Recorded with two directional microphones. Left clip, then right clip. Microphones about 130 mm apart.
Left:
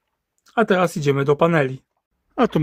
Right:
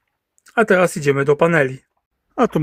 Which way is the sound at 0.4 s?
5° right (ahead or behind).